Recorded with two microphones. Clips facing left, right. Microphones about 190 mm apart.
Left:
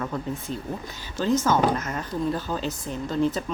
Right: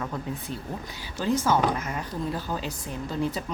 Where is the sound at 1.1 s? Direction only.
10° right (ahead or behind).